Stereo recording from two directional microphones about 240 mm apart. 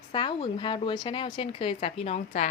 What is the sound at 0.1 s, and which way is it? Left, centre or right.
Speech, centre.